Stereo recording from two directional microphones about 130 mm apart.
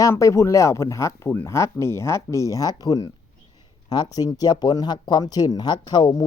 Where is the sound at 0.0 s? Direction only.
25° left (ahead or behind).